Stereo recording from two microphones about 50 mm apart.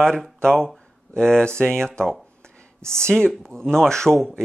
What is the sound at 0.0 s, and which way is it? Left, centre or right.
Speech, centre.